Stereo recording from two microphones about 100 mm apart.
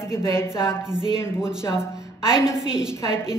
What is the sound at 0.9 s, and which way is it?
Speech, 5° right (ahead or behind).